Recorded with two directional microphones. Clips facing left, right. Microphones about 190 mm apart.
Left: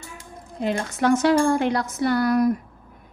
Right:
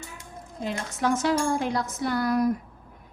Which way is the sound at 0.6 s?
65° left (ahead or behind).